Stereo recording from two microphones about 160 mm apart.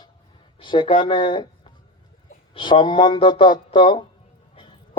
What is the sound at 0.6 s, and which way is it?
Speech, 30° left (ahead or behind).